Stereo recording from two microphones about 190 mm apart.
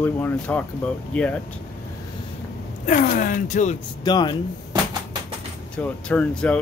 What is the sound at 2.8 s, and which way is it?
Speech, 45° left (ahead or behind).